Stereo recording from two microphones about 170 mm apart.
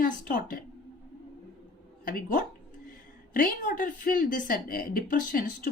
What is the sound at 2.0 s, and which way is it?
A woman's voice, 55° left (ahead or behind).